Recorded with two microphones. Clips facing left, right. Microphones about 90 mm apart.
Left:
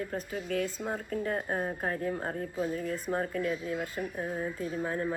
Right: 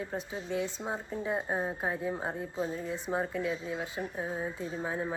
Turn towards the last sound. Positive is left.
turn(degrees=-15)  # may be behind; listen again after turning